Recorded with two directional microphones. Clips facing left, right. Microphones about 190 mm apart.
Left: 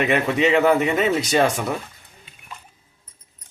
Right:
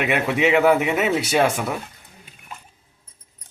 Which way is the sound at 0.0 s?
10° right (ahead or behind).